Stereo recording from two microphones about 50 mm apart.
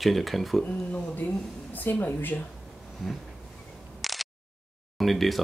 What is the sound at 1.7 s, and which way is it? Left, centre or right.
Speech, left.